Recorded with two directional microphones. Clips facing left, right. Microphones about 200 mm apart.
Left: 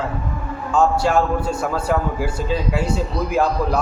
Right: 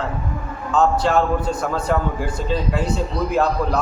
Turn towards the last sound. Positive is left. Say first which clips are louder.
# even
turn(degrees=10)  # may be behind; listen again after turning